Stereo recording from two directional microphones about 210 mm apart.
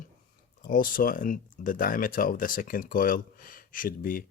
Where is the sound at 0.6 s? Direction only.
40° left (ahead or behind).